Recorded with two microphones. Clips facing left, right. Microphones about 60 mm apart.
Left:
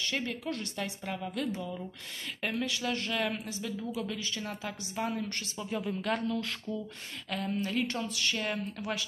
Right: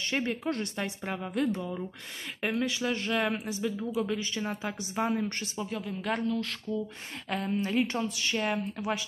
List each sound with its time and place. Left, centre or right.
0.0 s a woman's voice: right
2.4 s a woman's voice: centre
5.7 s speech: centre
7.2 s a woman's voice: right